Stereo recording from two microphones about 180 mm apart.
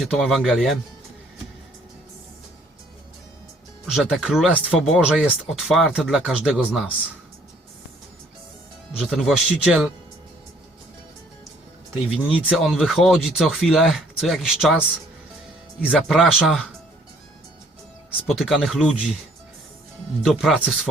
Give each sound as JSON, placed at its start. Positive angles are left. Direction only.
{"t": 0.0, "sound": "speech", "side_deg": 0}
{"t": 3.8, "sound": "speech", "side_deg": 0}
{"t": 9.0, "sound": "speech", "side_deg": 0}
{"t": 12.4, "sound": "speech", "side_deg": 0}
{"t": 15.8, "sound": "speech", "side_deg": 0}
{"t": 18.3, "sound": "speech", "side_deg": 0}
{"t": 20.2, "sound": "speech", "side_deg": 0}